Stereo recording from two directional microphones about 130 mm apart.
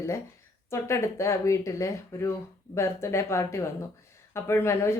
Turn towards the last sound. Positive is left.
turn(degrees=20)  # may be behind; listen again after turning